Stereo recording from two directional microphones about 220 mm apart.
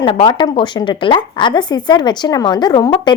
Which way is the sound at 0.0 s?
20° left (ahead or behind).